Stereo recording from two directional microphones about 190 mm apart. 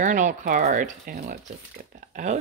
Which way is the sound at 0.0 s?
40° right (ahead or behind).